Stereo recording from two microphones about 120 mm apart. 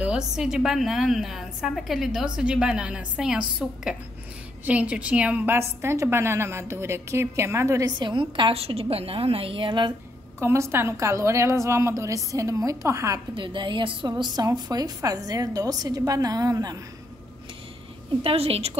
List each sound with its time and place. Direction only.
0.0 s a woman's voice: 5° right (ahead or behind); by 7.9 s 25° right (ahead or behind)
8.0 s a woman's voice: 40° right (ahead or behind)
10.4 s a woman's voice: 20° right (ahead or behind)
13.3 s a woman's voice: 40° right (ahead or behind)
18.2 s a woman's voice: 55° right (ahead or behind)